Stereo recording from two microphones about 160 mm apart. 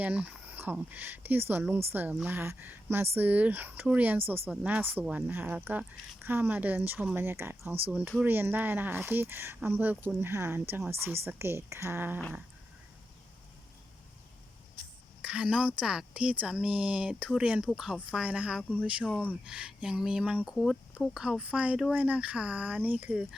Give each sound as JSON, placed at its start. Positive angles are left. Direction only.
{"t": 0.0, "sound": "speech", "side_deg": -10}
{"t": 15.2, "sound": "speech", "side_deg": -5}